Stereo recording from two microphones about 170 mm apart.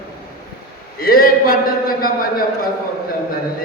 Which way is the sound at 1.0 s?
60° left (ahead or behind).